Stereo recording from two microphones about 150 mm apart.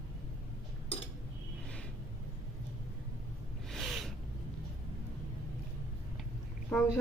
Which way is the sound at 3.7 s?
Centre (ahead or behind).